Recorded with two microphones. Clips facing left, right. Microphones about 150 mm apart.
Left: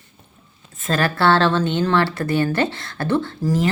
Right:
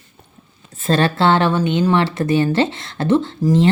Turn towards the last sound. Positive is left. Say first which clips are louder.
# right 5 dB
turn(degrees=-25)  # may be behind; listen again after turning